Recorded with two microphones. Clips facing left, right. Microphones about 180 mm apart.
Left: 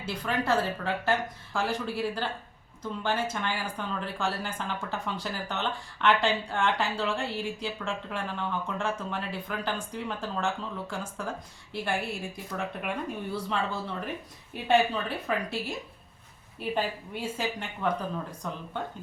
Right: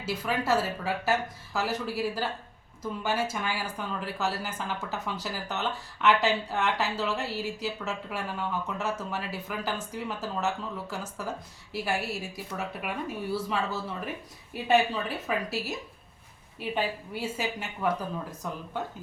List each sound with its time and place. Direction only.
0.0 s speech: 5° right (ahead or behind)
15.3 s speech: 5° right (ahead or behind)